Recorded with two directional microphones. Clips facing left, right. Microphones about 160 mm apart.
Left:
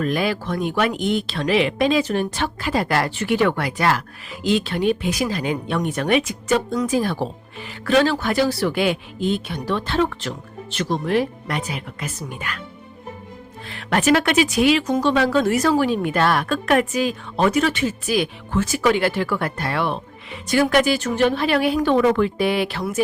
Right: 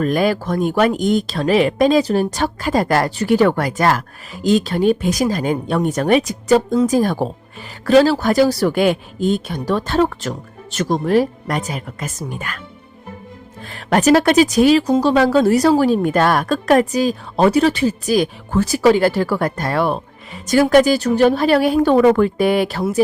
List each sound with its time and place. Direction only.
0.0 s a woman's voice: 45° right (ahead or behind)
13.7 s a woman's voice: 40° right (ahead or behind)